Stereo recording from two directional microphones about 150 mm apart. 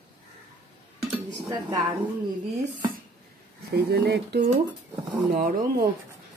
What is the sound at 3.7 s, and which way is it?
Speech, 90° right.